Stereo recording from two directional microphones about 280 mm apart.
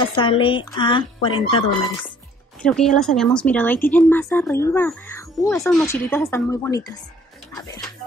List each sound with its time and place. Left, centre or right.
0.0 s speech: centre
2.6 s speech: centre